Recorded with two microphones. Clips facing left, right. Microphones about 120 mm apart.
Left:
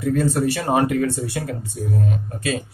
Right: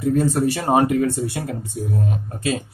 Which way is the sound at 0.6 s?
30° right (ahead or behind).